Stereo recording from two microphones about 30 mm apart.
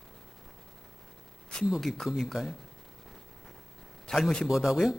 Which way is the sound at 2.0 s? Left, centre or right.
Centre.